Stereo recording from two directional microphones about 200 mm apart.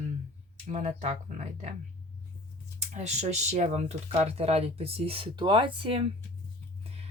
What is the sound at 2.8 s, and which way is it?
Speech, 35° right (ahead or behind).